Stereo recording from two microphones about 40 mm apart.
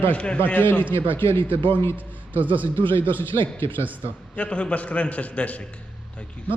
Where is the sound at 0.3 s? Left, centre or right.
Left.